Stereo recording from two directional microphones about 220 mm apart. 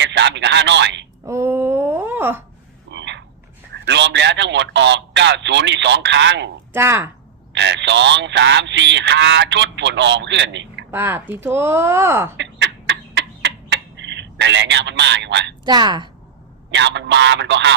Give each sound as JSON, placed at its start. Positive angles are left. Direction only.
{"t": 0.0, "sound": "telephone", "side_deg": -55}
{"t": 1.2, "sound": "a sound", "side_deg": -15}
{"t": 2.9, "sound": "a sound", "side_deg": -55}
{"t": 3.8, "sound": "telephone", "side_deg": -55}
{"t": 6.7, "sound": "speech", "side_deg": -10}
{"t": 7.5, "sound": "speech", "side_deg": -55}
{"t": 10.9, "sound": "speech", "side_deg": -10}
{"t": 12.4, "sound": "bird", "side_deg": -55}
{"t": 15.6, "sound": "a woman's voice", "side_deg": -20}
{"t": 16.7, "sound": "speech", "side_deg": -55}